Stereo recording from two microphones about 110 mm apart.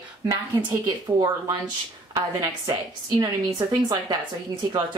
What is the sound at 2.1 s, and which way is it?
A woman's voice, 30° right (ahead or behind).